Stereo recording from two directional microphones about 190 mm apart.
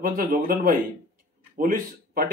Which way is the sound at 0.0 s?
50° right (ahead or behind).